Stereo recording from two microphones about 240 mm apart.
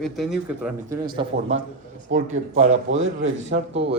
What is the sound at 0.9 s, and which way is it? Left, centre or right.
Speech, centre.